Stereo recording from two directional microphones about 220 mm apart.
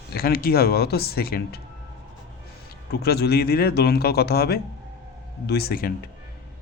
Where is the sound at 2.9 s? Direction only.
45° left (ahead or behind).